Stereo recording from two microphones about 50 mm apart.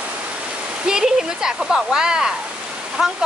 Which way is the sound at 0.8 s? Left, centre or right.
Centre.